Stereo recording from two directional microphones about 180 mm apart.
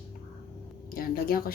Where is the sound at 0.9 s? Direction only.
55° left (ahead or behind).